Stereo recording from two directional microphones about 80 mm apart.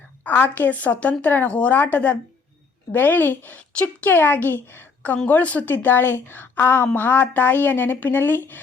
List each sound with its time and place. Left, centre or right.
0.3 s speech: left